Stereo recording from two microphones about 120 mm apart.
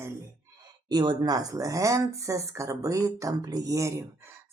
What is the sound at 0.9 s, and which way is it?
Speech, 35° right (ahead or behind).